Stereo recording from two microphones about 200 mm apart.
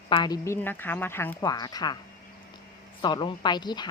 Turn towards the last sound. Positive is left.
turn(degrees=20)  # may be behind; listen again after turning